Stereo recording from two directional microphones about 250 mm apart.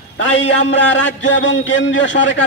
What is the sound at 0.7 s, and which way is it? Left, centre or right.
A man's voice, left.